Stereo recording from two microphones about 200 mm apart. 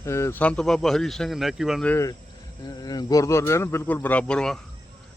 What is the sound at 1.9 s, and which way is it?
Speech, 15° left (ahead or behind).